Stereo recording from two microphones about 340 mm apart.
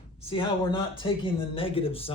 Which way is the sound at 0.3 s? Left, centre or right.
Centre.